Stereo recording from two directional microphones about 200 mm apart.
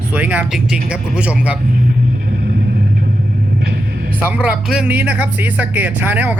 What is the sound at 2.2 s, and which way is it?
Vehicle, 55° right (ahead or behind).